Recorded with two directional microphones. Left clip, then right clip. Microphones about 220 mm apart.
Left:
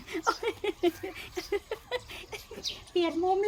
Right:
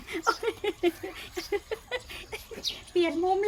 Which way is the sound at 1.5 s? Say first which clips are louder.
Right 1 dB; 10° left (ahead or behind).